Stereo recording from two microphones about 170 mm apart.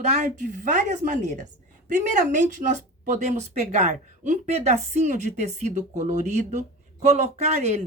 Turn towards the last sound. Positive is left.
turn(degrees=-40)  # may be behind; listen again after turning